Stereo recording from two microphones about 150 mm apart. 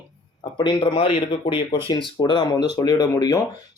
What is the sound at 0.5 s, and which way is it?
Speech, 30° left (ahead or behind).